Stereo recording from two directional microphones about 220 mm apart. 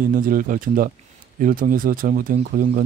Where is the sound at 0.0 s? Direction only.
40° right (ahead or behind).